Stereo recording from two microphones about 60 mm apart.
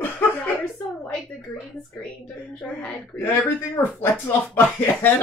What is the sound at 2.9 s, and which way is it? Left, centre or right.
Speech, left.